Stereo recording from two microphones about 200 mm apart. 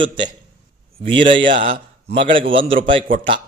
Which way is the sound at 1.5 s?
25° right (ahead or behind).